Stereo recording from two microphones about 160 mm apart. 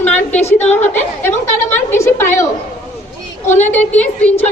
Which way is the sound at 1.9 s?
15° left (ahead or behind).